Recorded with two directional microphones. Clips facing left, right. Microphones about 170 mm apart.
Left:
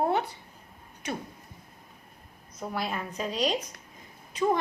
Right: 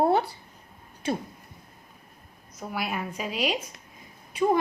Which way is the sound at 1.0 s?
30° right (ahead or behind).